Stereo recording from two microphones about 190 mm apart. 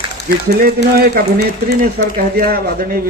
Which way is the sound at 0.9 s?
55° right (ahead or behind).